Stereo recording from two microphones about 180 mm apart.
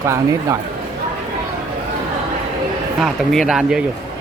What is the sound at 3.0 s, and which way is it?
Speech, centre (ahead or behind).